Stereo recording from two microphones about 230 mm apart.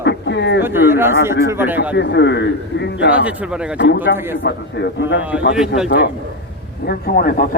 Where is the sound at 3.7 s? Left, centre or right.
Left.